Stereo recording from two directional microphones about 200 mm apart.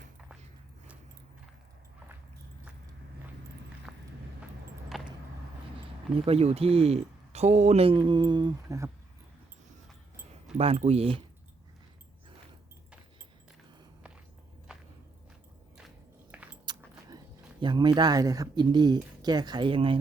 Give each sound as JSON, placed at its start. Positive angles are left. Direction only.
{"t": 3.9, "sound": "a sound", "side_deg": -5}
{"t": 4.9, "sound": "vehicle", "side_deg": 0}
{"t": 6.1, "sound": "speech", "side_deg": -30}
{"t": 10.6, "sound": "speech", "side_deg": -30}
{"t": 14.7, "sound": "walk", "side_deg": -5}
{"t": 16.3, "sound": "keys jangling", "side_deg": -5}
{"t": 16.6, "sound": "speech", "side_deg": -20}